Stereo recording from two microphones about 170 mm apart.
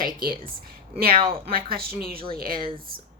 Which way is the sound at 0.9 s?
60° right (ahead or behind).